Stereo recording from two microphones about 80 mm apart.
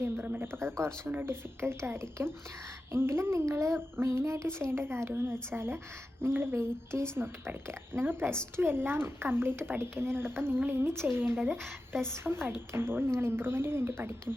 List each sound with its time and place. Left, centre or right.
0.3 s a woman's voice: right
11.4 s a woman's voice: centre
12.1 s a woman's voice: right